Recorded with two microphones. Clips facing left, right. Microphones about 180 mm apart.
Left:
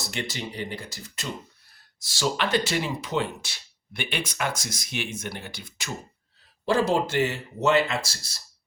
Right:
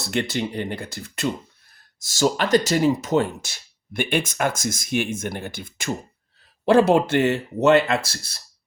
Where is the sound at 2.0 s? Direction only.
45° right (ahead or behind).